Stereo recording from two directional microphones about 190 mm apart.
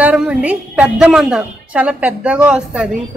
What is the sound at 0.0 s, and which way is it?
A woman's voice, 10° right (ahead or behind).